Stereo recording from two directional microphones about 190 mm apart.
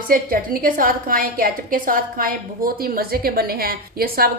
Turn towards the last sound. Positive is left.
turn(degrees=-50)  # may be behind; listen again after turning